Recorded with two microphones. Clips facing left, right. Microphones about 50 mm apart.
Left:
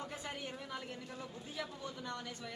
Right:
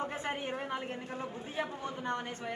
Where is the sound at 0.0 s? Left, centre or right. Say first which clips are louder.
Right 8 dB; right.